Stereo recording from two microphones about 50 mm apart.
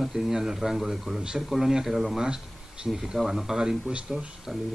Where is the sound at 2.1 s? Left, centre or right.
Centre.